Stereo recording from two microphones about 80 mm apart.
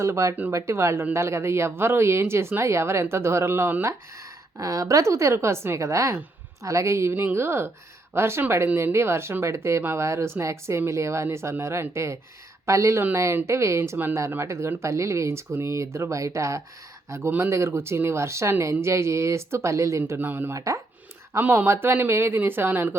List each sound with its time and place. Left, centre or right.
0.0 s speech: right
4.5 s speech: right
20.0 s speech: right
20.5 s speech: right
21.3 s speech: right